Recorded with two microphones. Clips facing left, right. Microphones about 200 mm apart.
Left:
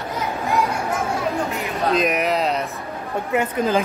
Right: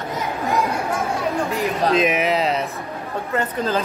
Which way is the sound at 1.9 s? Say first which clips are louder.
Left 1 dB; centre (ahead or behind).